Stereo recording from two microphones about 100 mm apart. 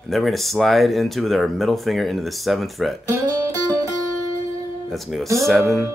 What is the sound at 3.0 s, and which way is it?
Music, 30° right (ahead or behind).